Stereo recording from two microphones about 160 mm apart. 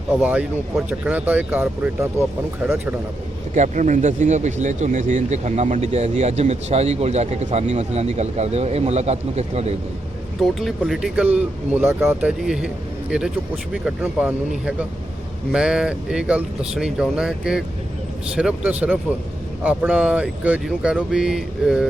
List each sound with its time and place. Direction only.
0.1 s speech: 5° right (ahead or behind)
3.5 s speech: 50° right (ahead or behind)
10.4 s a man's voice: centre (ahead or behind)